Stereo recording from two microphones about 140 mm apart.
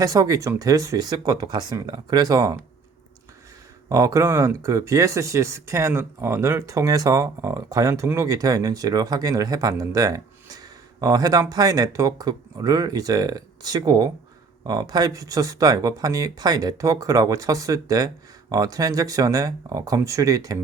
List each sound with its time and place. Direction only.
0.0 s speech: 25° right (ahead or behind)
3.8 s speech: 25° right (ahead or behind)